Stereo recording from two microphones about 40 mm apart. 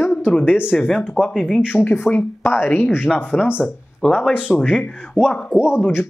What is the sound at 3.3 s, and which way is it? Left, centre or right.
Speech, right.